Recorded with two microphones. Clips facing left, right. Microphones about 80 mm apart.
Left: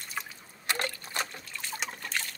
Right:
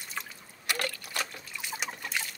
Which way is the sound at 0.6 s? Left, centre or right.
Left.